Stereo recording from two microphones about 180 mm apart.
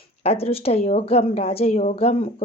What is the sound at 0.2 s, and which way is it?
Speech, 35° left (ahead or behind).